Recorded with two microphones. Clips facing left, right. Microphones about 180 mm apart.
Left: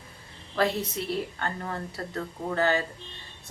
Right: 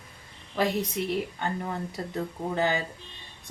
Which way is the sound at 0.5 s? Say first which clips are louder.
Even; 15° right (ahead or behind).